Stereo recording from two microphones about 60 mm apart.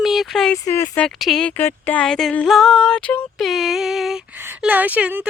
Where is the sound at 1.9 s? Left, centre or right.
Centre.